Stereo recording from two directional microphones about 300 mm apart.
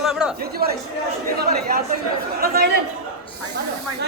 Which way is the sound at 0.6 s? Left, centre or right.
Right.